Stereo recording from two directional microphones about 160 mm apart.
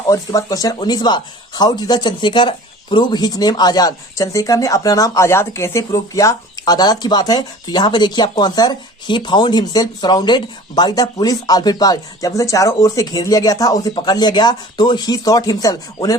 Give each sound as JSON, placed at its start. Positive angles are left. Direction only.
{"t": 0.1, "sound": "speech", "side_deg": 20}